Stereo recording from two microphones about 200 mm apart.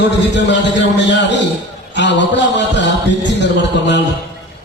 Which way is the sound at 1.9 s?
60° left (ahead or behind).